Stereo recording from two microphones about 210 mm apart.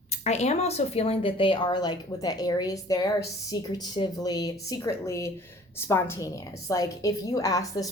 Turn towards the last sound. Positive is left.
turn(degrees=15)  # may be behind; listen again after turning